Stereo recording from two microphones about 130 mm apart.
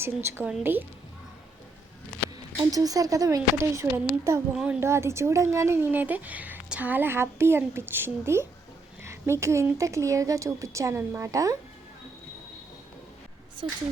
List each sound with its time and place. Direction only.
0.0 s a woman's voice: 20° right (ahead or behind)
2.6 s speech: 30° right (ahead or behind)
4.5 s a woman's voice: 10° right (ahead or behind)
4.8 s speech: 20° right (ahead or behind)